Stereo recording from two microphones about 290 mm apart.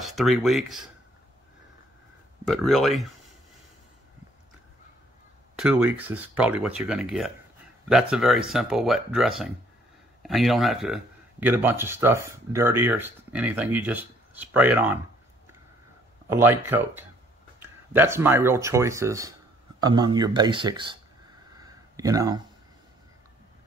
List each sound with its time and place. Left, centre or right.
0.0 s speech: centre
2.4 s speech: centre
5.6 s speech: centre
16.3 s speech: centre
21.5 s a sound: centre